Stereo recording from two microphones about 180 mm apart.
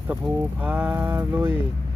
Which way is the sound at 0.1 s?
5° right (ahead or behind).